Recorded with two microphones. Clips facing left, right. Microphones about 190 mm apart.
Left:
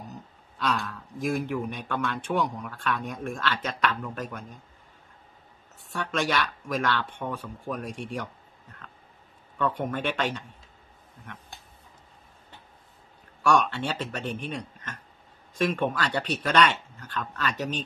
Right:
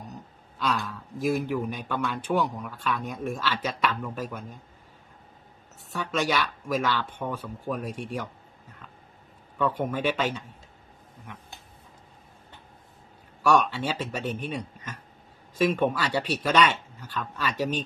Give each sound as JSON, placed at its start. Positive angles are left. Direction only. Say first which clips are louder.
{"t": 0.0, "sound": "a sound", "louder": "even", "side_deg": 0}
{"t": 1.2, "sound": "a man's voice", "louder": "right 2 dB", "side_deg": -5}
{"t": 5.9, "sound": "a man's voice", "louder": "right 1 dB", "side_deg": 0}
{"t": 9.6, "sound": "speech", "louder": "right 1 dB", "side_deg": -10}
{"t": 13.4, "sound": "speech", "louder": "right 1 dB", "side_deg": -5}